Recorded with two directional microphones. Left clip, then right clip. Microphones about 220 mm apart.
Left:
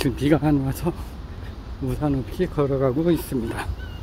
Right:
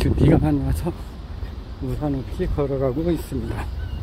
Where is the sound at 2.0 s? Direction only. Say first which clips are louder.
Left 2 dB; 20° left (ahead or behind).